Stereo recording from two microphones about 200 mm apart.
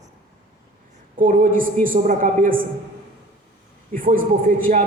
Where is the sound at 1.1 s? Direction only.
45° right (ahead or behind).